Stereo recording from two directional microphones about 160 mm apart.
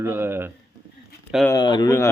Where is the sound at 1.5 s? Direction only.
25° left (ahead or behind).